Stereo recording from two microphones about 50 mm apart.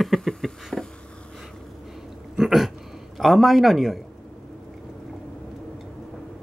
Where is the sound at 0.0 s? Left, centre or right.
Centre.